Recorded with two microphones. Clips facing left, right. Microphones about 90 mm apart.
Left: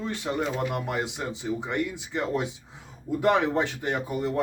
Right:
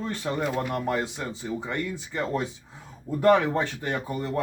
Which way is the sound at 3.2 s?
20° left (ahead or behind).